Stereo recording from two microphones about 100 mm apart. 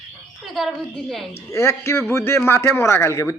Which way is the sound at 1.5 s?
25° left (ahead or behind).